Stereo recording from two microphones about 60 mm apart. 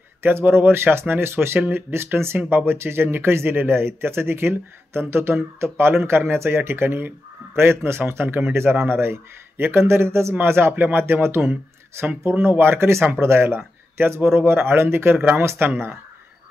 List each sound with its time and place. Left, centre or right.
0.2 s speech: right